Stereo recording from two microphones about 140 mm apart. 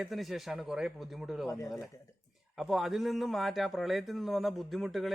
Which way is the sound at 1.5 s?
20° left (ahead or behind).